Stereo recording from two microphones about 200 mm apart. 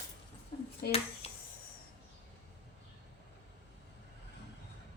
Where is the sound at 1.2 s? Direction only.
30° left (ahead or behind).